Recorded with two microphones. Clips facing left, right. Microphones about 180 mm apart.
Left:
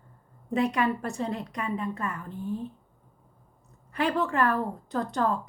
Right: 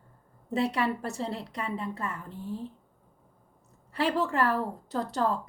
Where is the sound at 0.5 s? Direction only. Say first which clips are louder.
Left 2 dB; 30° right (ahead or behind).